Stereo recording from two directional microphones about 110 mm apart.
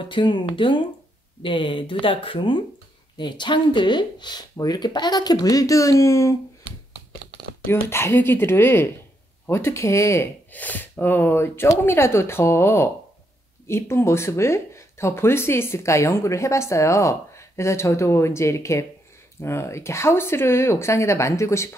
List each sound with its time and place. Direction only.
0.0 s speech: 45° left (ahead or behind); by 6.3 s 25° left (ahead or behind)
7.6 s speech: 20° left (ahead or behind)